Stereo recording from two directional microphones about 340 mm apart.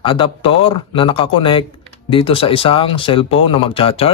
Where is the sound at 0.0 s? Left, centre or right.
Centre.